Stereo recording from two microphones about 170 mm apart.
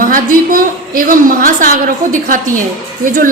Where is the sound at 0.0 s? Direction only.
55° right (ahead or behind).